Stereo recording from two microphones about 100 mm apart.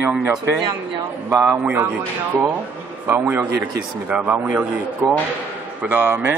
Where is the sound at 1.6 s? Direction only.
15° right (ahead or behind).